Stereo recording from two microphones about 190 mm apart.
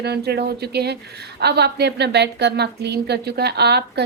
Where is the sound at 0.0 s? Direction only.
60° right (ahead or behind).